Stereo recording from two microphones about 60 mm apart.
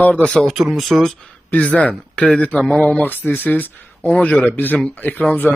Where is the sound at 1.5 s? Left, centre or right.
Left.